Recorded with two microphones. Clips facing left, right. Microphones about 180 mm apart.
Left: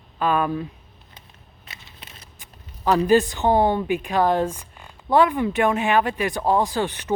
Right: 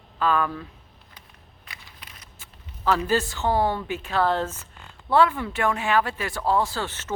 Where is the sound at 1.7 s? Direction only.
25° left (ahead or behind).